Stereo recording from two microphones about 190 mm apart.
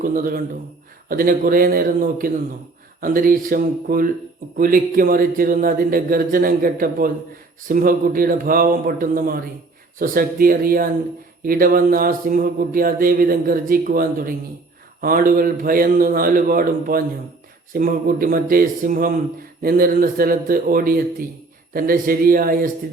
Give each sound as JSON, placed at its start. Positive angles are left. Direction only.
{"t": 0.0, "sound": "mantra", "side_deg": -50}